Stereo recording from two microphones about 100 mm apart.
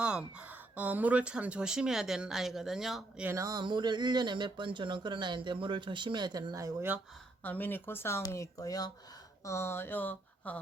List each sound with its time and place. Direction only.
0.0 s speech: 10° right (ahead or behind)
3.3 s speech: 35° right (ahead or behind)
3.6 s speech: 50° right (ahead or behind)
7.4 s speech: 20° left (ahead or behind)